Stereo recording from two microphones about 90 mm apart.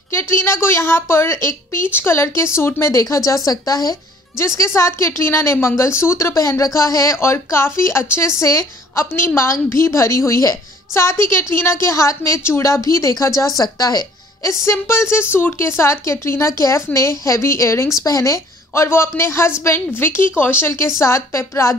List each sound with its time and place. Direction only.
0.1 s speech: 30° left (ahead or behind)
4.6 s speech: 30° left (ahead or behind)
14.7 s a woman's voice: 30° left (ahead or behind)